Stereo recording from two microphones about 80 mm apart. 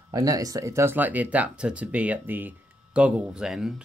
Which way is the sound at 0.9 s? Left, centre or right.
Right.